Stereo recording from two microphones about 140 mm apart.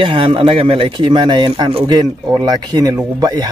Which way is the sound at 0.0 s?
40° right (ahead or behind).